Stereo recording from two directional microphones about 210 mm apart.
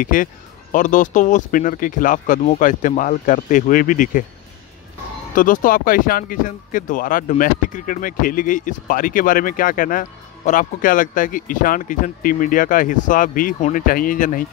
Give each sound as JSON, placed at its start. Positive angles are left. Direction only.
{"t": 0.0, "sound": "speech", "side_deg": 40}
{"t": 5.3, "sound": "speech", "side_deg": 40}